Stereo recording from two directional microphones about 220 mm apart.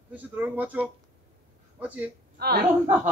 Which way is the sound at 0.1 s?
10° right (ahead or behind).